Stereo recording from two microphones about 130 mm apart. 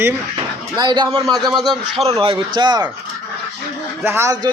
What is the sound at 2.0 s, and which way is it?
Speech, 45° right (ahead or behind).